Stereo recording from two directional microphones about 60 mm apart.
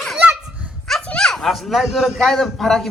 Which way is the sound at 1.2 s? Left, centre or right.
Centre.